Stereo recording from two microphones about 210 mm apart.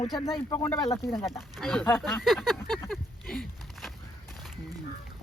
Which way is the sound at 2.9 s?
Centre (ahead or behind).